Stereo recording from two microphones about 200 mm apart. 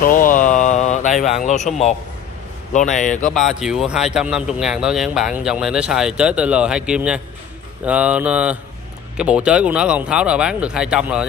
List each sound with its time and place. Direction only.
0.0 s a sound: 45° left (ahead or behind)
1.2 s a man's voice: 35° left (ahead or behind)
2.7 s a man's voice: 40° left (ahead or behind)
3.3 s speech: centre (ahead or behind)